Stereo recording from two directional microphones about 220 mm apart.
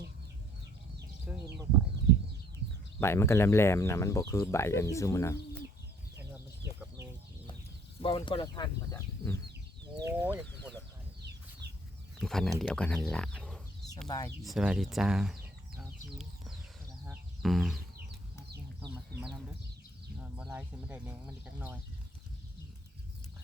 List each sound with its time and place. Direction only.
1.3 s a sound: 5° right (ahead or behind)
3.0 s speech: 10° left (ahead or behind)
6.1 s chicken: 10° right (ahead or behind)
8.0 s speech: 25° left (ahead or behind)
9.8 s a sound: 10° right (ahead or behind)
11.6 s chicken: 50° right (ahead or behind)
12.2 s speech: centre (ahead or behind)
15.8 s chicken: centre (ahead or behind)
20.3 s speech: 5° right (ahead or behind)